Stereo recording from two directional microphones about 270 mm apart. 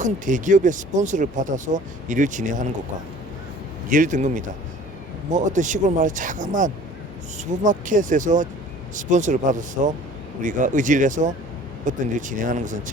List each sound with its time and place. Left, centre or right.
0.0 s speech: right
3.8 s speech: right